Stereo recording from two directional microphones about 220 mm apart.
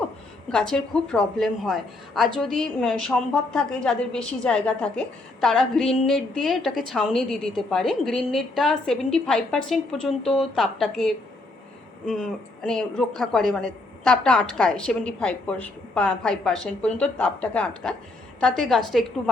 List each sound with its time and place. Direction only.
0.7 s a woman's voice: 5° left (ahead or behind)